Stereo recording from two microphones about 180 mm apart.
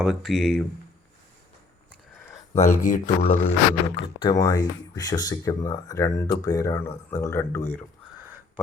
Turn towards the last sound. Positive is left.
turn(degrees=15)  # may be behind; listen again after turning